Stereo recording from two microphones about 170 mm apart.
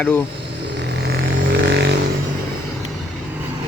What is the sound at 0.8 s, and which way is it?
Vehicle, 80° right.